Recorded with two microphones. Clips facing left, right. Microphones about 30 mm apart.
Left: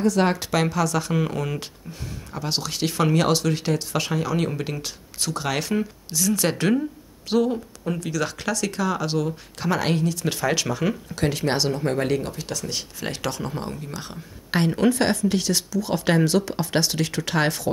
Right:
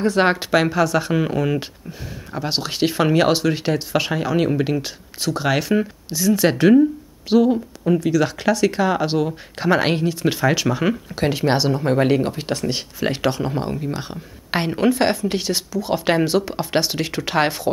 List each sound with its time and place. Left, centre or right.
0.0 s speech: right; by 12.1 s centre
12.1 s speech: right